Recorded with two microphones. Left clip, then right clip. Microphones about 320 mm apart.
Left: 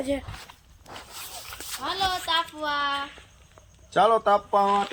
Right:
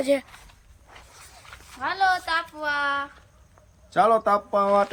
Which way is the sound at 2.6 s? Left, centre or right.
Centre.